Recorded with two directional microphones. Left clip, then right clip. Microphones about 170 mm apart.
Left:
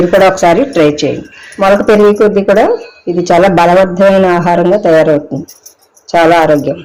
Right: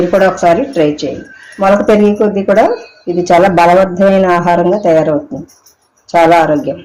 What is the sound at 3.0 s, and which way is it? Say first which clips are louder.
A man's voice: even; 15° left (ahead or behind).